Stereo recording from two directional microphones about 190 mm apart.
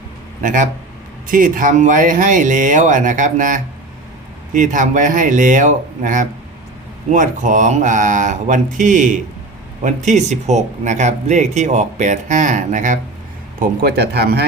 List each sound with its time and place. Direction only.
0.4 s speech: 45° right (ahead or behind)
13.6 s speech: 55° right (ahead or behind)